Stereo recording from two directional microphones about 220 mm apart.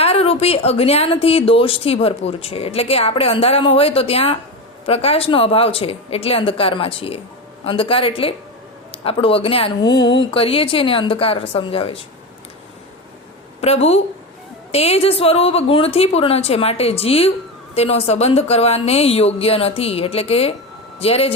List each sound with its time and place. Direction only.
0.0 s speech: 25° left (ahead or behind)
13.6 s speech: 30° left (ahead or behind)